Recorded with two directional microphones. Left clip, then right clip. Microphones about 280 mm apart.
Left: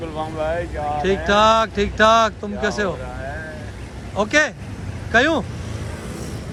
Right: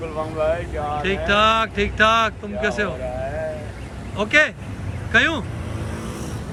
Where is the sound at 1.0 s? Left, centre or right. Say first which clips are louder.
Left 2 dB; centre.